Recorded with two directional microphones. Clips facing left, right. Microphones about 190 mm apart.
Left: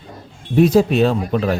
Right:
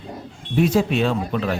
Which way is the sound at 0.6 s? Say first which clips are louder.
Left 5 dB; 40° left (ahead or behind).